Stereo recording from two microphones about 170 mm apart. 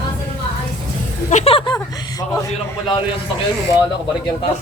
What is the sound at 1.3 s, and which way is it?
A man's voice, 40° left (ahead or behind).